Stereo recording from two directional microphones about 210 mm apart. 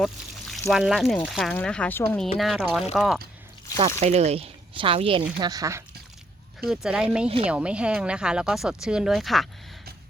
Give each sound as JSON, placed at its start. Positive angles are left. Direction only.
{"t": 0.0, "sound": "a sound", "side_deg": 0}
{"t": 0.7, "sound": "speech", "side_deg": 0}
{"t": 3.8, "sound": "speech", "side_deg": -30}
{"t": 6.7, "sound": "speech", "side_deg": -5}